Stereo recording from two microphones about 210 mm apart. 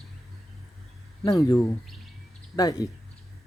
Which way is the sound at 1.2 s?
15° left (ahead or behind).